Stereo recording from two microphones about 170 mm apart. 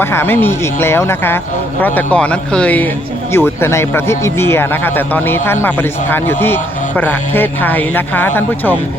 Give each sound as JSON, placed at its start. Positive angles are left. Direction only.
{"t": 0.0, "sound": "speech", "side_deg": 15}